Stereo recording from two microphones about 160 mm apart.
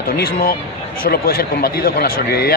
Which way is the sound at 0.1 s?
65° left (ahead or behind).